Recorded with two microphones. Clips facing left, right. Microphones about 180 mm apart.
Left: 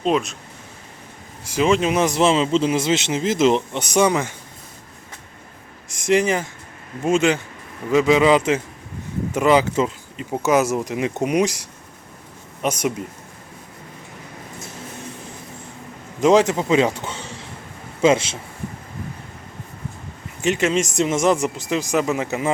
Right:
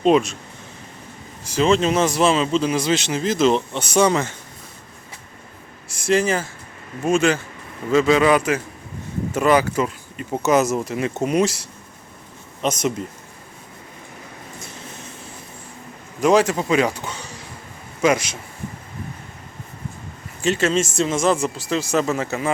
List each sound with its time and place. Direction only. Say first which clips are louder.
0.0 s speech: right 4 dB; centre (ahead or behind)
1.5 s speech: right 1 dB; 10° left (ahead or behind)
5.9 s speech: left 1 dB; 20° left (ahead or behind)
10.4 s speech: even; 10° left (ahead or behind)
16.2 s speech: left 1 dB; 20° left (ahead or behind)
20.4 s speech: even; 15° left (ahead or behind)